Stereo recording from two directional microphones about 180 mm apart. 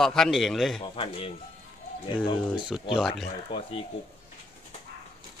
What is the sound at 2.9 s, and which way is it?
Speech, centre (ahead or behind).